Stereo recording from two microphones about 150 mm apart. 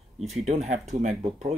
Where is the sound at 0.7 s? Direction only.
55° right (ahead or behind).